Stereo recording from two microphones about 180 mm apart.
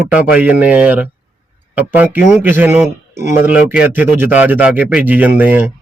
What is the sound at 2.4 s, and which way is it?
A man's voice, 10° right (ahead or behind).